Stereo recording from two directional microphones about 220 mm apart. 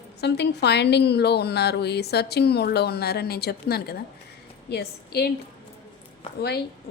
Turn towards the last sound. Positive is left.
turn(degrees=45)  # may be behind; listen again after turning